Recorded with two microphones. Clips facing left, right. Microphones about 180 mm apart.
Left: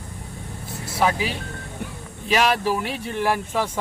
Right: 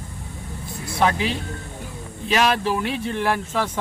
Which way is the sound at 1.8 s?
60° left (ahead or behind).